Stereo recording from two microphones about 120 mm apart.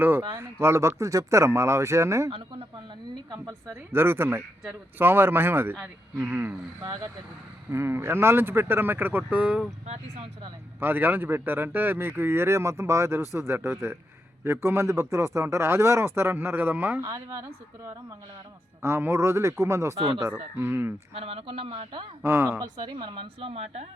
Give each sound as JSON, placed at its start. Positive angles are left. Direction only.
{"t": 0.0, "sound": "speech", "side_deg": -20}
{"t": 3.7, "sound": "speech", "side_deg": -20}
{"t": 6.8, "sound": "speech", "side_deg": -30}
{"t": 9.8, "sound": "speech", "side_deg": -65}
{"t": 10.8, "sound": "speech", "side_deg": -15}
{"t": 17.0, "sound": "speech", "side_deg": -30}
{"t": 18.8, "sound": "speech", "side_deg": -20}
{"t": 21.2, "sound": "a man's voice", "side_deg": -55}
{"t": 22.2, "sound": "speech", "side_deg": -20}
{"t": 22.6, "sound": "speech", "side_deg": -35}